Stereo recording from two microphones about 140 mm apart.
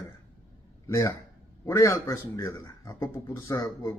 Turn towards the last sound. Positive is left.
turn(degrees=20)  # may be behind; listen again after turning